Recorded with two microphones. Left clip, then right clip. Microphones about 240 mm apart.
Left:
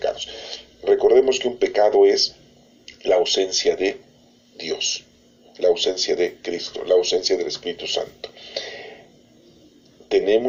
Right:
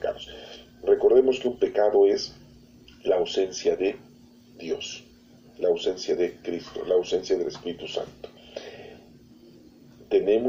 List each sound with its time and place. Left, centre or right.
0.0 s a sound: left
3.0 s speech: left
10.1 s speech: left